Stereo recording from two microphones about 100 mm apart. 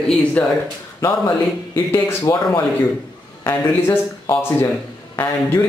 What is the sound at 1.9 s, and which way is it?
Speech, 35° left (ahead or behind).